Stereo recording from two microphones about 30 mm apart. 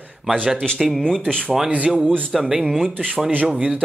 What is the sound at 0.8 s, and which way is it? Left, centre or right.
Speech, centre.